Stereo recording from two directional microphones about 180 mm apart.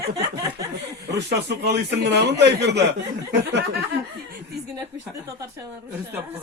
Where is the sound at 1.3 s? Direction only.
70° right (ahead or behind).